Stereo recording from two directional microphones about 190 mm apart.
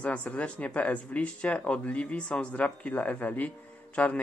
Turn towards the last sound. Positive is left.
turn(degrees=5)  # may be behind; listen again after turning